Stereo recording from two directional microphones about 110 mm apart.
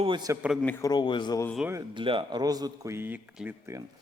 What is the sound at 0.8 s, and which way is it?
Speech, 40° left (ahead or behind).